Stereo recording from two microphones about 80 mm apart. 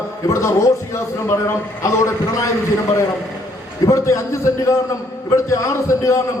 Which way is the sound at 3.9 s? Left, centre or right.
Left.